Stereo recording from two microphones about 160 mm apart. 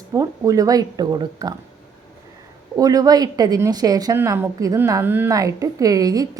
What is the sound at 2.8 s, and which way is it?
A woman's voice, 25° right (ahead or behind).